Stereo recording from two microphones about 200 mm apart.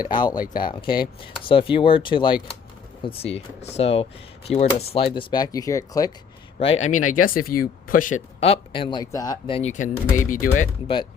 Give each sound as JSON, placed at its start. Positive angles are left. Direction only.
{"t": 0.1, "sound": "speech", "side_deg": 20}
{"t": 6.6, "sound": "speech", "side_deg": 30}
{"t": 9.6, "sound": "speech", "side_deg": 35}
{"t": 10.8, "sound": "speech", "side_deg": 25}